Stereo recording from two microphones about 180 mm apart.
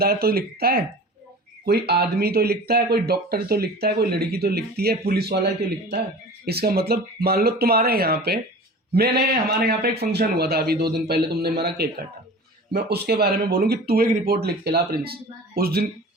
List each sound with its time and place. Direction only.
0.0 s speech: 60° right (ahead or behind)